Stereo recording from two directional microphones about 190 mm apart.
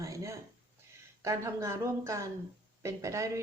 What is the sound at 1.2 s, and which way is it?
A woman's voice, 15° right (ahead or behind).